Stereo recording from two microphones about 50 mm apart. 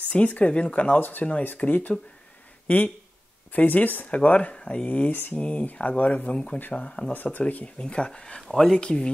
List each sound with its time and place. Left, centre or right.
0.1 s speech: left
0.9 s speech: left
7.8 s speech: centre